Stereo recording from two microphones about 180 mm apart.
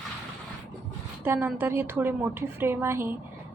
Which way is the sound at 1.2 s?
10° right (ahead or behind).